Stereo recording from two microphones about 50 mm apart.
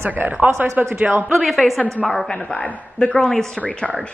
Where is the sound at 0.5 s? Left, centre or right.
Right.